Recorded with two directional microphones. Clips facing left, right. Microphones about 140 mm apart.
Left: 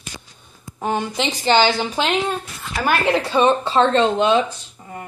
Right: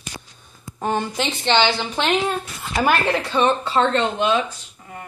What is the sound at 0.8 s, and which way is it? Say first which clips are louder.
Speech: left 1 dB; 5° left (ahead or behind).